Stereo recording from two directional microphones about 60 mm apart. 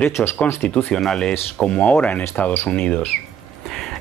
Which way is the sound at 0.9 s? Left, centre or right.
Centre.